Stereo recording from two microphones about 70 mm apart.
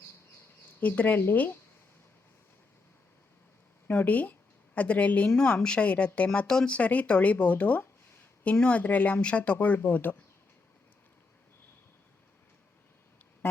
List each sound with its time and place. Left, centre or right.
0.8 s speech: left
3.8 s a woman's voice: left
5.3 s speech: centre; by 10.2 s left
13.4 s music: left